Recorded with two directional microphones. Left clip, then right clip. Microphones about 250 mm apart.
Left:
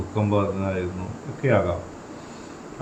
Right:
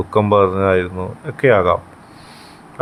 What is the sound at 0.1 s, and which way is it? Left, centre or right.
Speech, right.